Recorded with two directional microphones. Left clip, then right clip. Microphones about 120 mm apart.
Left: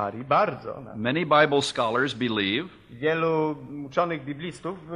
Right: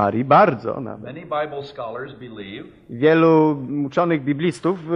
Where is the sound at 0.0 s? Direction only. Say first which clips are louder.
Right 9 dB; 30° left (ahead or behind).